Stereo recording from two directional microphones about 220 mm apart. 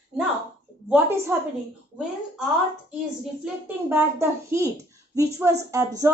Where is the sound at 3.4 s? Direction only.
10° right (ahead or behind).